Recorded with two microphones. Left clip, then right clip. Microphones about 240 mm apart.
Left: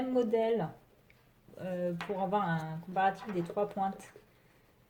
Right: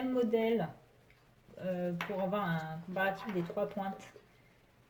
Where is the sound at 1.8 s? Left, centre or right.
Left.